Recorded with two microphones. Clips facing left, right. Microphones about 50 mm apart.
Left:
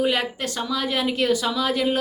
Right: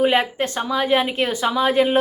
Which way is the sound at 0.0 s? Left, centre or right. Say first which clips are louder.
Right 5 dB; right.